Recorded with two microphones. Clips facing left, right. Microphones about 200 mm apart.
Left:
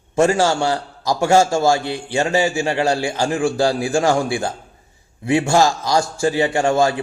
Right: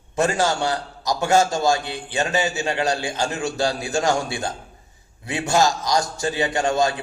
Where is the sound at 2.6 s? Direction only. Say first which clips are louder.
Left 4 dB; 30° left (ahead or behind).